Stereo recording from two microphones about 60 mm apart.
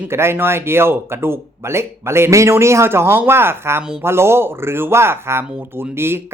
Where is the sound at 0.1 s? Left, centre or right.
Right.